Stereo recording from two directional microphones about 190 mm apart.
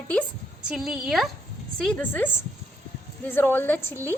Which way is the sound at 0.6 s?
5° right (ahead or behind).